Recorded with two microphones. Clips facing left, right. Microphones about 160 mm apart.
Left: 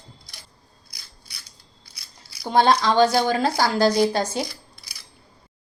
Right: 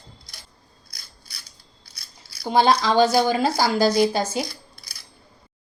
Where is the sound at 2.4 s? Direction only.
5° right (ahead or behind).